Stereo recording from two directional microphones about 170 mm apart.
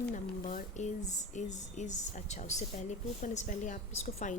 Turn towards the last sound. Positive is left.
turn(degrees=45)  # may be behind; listen again after turning